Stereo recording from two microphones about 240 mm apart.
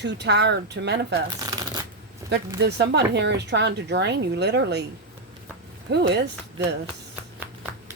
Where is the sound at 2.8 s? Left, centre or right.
Right.